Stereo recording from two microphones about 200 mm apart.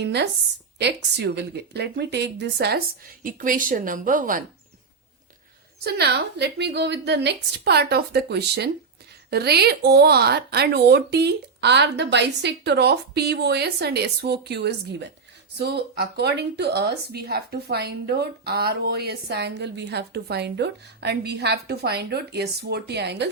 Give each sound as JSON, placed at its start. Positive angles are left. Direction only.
{"t": 0.0, "sound": "speech", "side_deg": -55}
{"t": 5.8, "sound": "speech", "side_deg": -55}